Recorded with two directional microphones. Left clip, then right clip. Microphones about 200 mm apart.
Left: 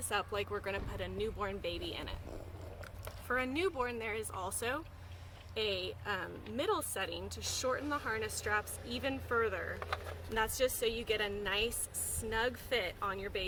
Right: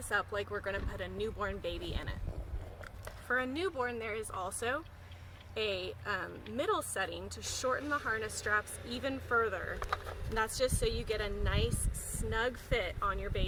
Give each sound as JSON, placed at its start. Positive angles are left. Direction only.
{"t": 0.1, "sound": "speech", "side_deg": 10}
{"t": 3.2, "sound": "speech", "side_deg": 15}
{"t": 5.5, "sound": "speech", "side_deg": 5}